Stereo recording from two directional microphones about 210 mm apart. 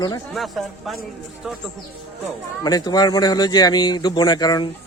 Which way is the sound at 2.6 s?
20° left (ahead or behind).